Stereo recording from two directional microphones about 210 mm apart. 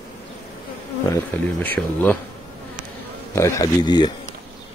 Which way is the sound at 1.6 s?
10° left (ahead or behind).